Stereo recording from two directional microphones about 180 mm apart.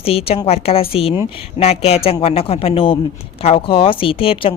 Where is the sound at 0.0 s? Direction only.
35° left (ahead or behind).